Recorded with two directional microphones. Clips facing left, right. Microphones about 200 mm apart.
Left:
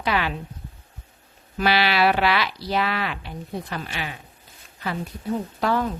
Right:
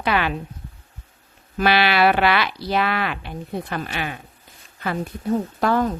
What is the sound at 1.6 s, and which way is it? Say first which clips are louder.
A woman's voice: right 3 dB; 55° right (ahead or behind).